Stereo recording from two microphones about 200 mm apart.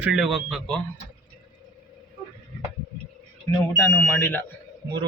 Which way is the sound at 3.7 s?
10° left (ahead or behind).